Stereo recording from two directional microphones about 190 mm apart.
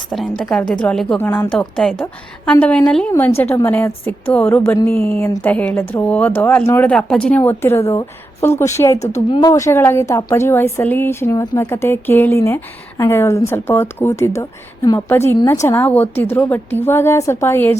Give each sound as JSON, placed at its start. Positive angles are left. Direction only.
{"t": 0.1, "sound": "a woman's voice", "side_deg": 0}
{"t": 9.0, "sound": "speech", "side_deg": 35}
{"t": 9.4, "sound": "a woman's voice", "side_deg": 15}